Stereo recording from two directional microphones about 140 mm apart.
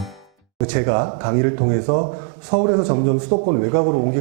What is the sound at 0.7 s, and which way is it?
A man's voice, 15° right (ahead or behind).